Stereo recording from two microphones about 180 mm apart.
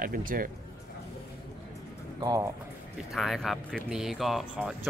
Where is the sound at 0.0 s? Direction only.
50° right (ahead or behind).